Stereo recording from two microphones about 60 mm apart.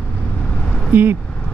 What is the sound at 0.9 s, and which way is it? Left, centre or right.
Speech, right.